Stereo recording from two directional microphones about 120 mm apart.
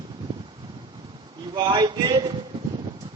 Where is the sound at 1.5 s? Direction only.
40° right (ahead or behind).